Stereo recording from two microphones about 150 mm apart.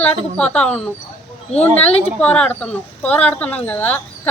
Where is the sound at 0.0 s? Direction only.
10° left (ahead or behind).